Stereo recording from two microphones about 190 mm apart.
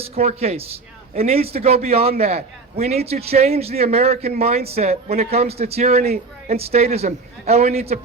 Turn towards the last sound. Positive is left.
turn(degrees=-35)  # may be behind; listen again after turning